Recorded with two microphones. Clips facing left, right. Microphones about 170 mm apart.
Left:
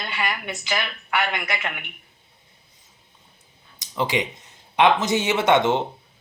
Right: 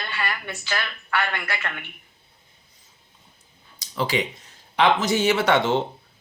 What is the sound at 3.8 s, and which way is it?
Speech, 20° left (ahead or behind).